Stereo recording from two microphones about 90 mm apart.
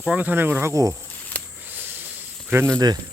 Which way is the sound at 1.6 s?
20° right (ahead or behind).